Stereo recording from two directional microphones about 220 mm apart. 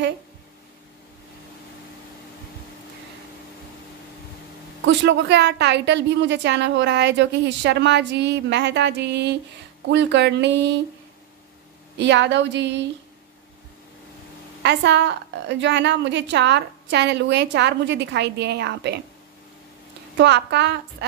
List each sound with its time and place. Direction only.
4.8 s a woman's voice: 50° right (ahead or behind)
12.0 s a woman's voice: 55° right (ahead or behind)
14.6 s a woman's voice: 50° right (ahead or behind)
20.2 s a woman's voice: 50° right (ahead or behind)